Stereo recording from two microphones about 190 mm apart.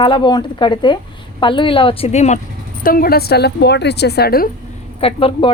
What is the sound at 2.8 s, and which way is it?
A woman's voice, 50° left (ahead or behind).